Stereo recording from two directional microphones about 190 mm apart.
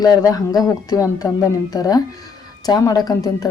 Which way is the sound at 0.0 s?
20° left (ahead or behind).